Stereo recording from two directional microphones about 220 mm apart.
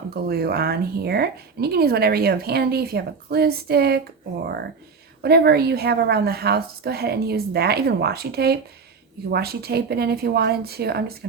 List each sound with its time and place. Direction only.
0.1 s a woman's voice: 45° right (ahead or behind)